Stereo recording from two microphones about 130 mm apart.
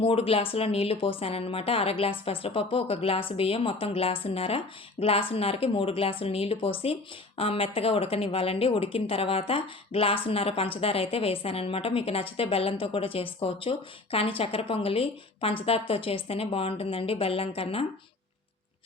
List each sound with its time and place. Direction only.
0.0 s a woman's voice: 45° left (ahead or behind)